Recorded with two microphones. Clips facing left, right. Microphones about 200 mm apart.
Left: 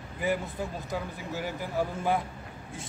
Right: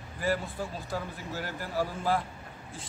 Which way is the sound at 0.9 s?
15° left (ahead or behind).